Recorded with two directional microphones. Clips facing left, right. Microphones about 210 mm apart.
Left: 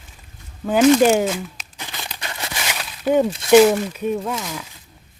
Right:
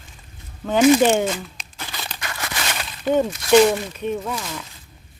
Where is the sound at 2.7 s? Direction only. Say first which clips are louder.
Left 2 dB; 5° left (ahead or behind).